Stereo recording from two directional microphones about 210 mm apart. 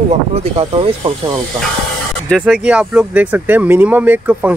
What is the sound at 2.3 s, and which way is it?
Speech, 5° right (ahead or behind).